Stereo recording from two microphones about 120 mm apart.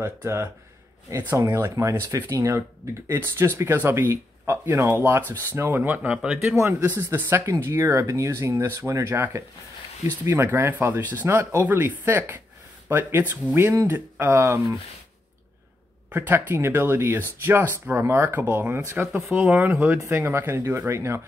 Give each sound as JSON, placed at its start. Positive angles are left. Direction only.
{"t": 0.0, "sound": "speech", "side_deg": -20}
{"t": 6.5, "sound": "speech", "side_deg": -25}
{"t": 16.1, "sound": "speech", "side_deg": -20}